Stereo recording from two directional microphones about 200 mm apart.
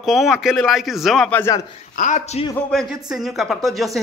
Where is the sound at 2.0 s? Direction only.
35° left (ahead or behind).